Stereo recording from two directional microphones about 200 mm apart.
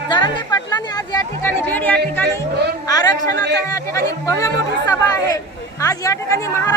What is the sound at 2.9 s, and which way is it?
Speech, 20° left (ahead or behind).